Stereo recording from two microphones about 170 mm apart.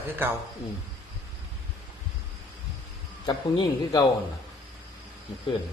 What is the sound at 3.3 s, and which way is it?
Speech, 25° left (ahead or behind).